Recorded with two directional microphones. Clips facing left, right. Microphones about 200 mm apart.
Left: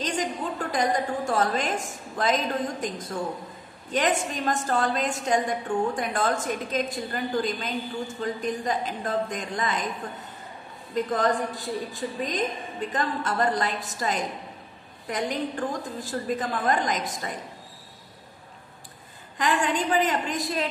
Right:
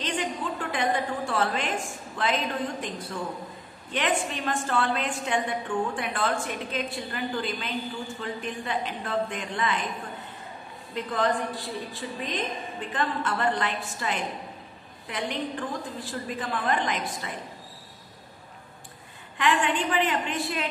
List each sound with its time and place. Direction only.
0.0 s a woman's voice: 40° left (ahead or behind)
11.0 s a woman's voice: 45° left (ahead or behind)
19.3 s a woman's voice: 40° left (ahead or behind)